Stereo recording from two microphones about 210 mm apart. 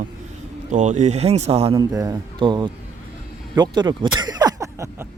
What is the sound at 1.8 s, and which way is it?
Speech, 15° right (ahead or behind).